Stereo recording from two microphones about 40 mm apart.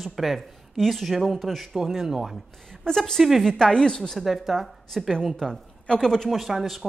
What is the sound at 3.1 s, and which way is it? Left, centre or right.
Speech, centre.